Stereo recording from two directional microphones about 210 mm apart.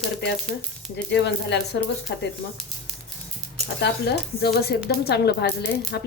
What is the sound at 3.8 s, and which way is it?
A woman's voice, 55° left (ahead or behind).